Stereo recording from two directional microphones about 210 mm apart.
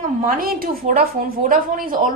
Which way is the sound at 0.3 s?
45° right (ahead or behind).